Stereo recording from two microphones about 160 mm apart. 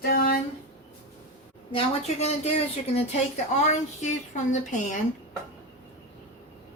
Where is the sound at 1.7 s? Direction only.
45° left (ahead or behind).